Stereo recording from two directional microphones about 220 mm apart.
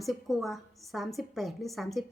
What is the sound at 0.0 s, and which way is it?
Speech, centre (ahead or behind).